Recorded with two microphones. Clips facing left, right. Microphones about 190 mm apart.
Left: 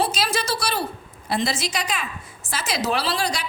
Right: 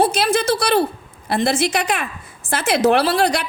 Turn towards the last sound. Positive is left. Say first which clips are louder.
# right 8 dB
turn(degrees=-60)  # may be behind; listen again after turning